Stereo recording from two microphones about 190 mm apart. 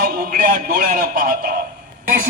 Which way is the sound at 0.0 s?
50° right (ahead or behind).